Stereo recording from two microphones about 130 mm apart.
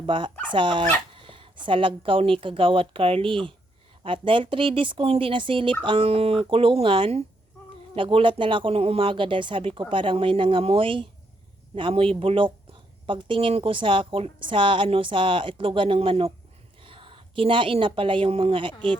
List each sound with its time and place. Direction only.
0.0 s a woman's voice: 40° right (ahead or behind)